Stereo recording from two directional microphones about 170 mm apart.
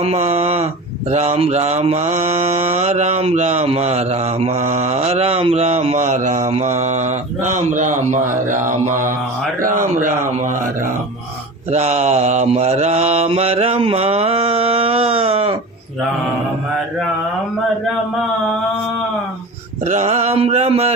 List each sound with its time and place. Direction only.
0.0 s speech: 40° right (ahead or behind)
1.1 s mantra: 40° right (ahead or behind)
9.6 s speech: 50° right (ahead or behind)
11.7 s mantra: 40° right (ahead or behind)
19.8 s mantra: 40° right (ahead or behind)